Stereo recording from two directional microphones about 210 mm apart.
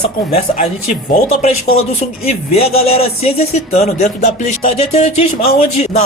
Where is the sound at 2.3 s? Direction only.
30° left (ahead or behind).